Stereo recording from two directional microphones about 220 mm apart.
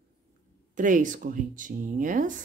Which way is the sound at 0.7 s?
35° right (ahead or behind).